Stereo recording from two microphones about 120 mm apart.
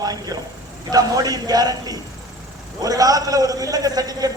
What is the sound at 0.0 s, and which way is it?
A man's voice, 35° right (ahead or behind).